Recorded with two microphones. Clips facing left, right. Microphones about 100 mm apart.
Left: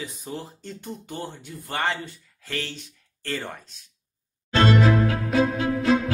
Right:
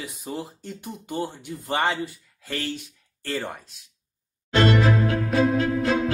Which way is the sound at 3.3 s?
10° right (ahead or behind).